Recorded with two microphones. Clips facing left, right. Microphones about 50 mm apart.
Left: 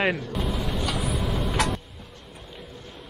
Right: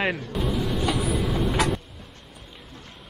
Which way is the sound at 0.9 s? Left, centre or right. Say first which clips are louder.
Right 3 dB; centre.